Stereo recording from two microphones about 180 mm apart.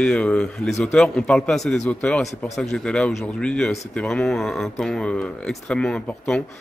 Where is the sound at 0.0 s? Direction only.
5° left (ahead or behind).